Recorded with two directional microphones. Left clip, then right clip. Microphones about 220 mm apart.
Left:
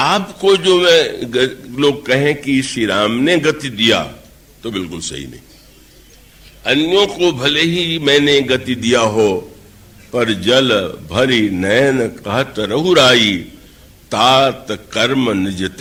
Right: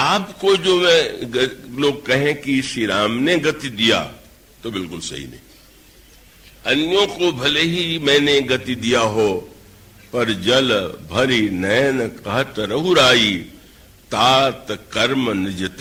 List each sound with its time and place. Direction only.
0.0 s a man's voice: 40° right (ahead or behind)
6.6 s a man's voice: 40° right (ahead or behind)